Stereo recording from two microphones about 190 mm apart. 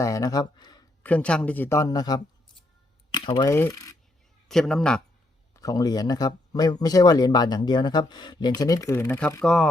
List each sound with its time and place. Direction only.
0.0 s speech: 20° left (ahead or behind)
1.0 s a man's voice: 5° left (ahead or behind)
3.2 s a man's voice: 20° left (ahead or behind)
4.4 s speech: centre (ahead or behind)
5.5 s speech: 20° left (ahead or behind)